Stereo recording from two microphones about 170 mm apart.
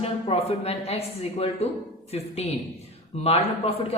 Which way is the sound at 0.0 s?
35° left (ahead or behind).